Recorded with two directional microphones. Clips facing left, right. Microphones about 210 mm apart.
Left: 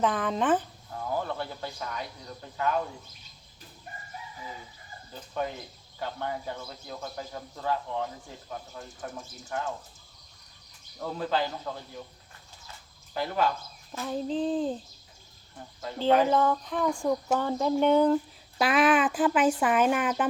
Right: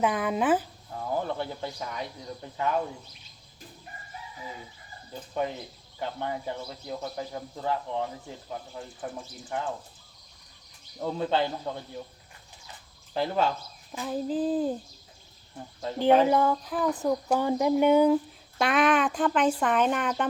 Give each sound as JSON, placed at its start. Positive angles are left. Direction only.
{"t": 0.0, "sound": "speech", "side_deg": -10}
{"t": 1.1, "sound": "speech", "side_deg": -20}
{"t": 6.0, "sound": "speech", "side_deg": -20}
{"t": 11.0, "sound": "speech", "side_deg": -25}
{"t": 13.1, "sound": "speech", "side_deg": -25}
{"t": 14.0, "sound": "speech", "side_deg": -5}
{"t": 15.8, "sound": "speech", "side_deg": -15}
{"t": 18.6, "sound": "speech", "side_deg": 0}